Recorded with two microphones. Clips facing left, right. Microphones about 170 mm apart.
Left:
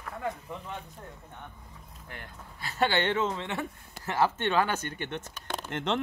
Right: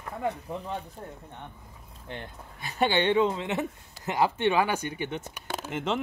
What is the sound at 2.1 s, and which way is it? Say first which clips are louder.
Speech: right 6 dB; 20° right (ahead or behind).